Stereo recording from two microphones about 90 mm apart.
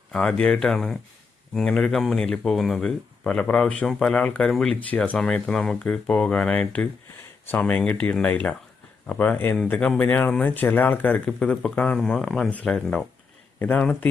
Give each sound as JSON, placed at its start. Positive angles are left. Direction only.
{"t": 0.1, "sound": "speech", "side_deg": 10}
{"t": 11.9, "sound": "speech", "side_deg": 5}
{"t": 12.5, "sound": "speech", "side_deg": 15}
{"t": 12.7, "sound": "speech", "side_deg": 5}
{"t": 13.6, "sound": "speech", "side_deg": 15}